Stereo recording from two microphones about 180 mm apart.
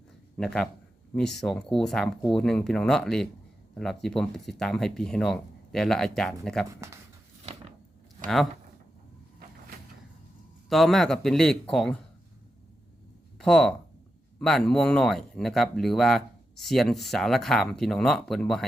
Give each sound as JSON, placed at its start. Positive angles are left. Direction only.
{"t": 0.3, "sound": "speech", "side_deg": 5}
{"t": 6.7, "sound": "speech", "side_deg": -15}
{"t": 8.2, "sound": "speech", "side_deg": 0}
{"t": 10.7, "sound": "speech", "side_deg": 0}
{"t": 13.4, "sound": "speech", "side_deg": 5}